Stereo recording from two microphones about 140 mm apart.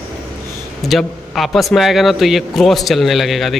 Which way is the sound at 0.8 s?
Centre (ahead or behind).